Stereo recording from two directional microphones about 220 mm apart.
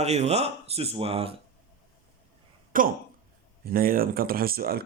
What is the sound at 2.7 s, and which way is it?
Speech, 40° right (ahead or behind).